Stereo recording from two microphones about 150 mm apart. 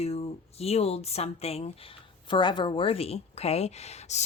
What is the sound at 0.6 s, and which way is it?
Speech, 45° left (ahead or behind).